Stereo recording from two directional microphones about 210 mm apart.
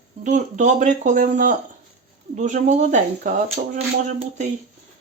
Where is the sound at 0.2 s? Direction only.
35° right (ahead or behind).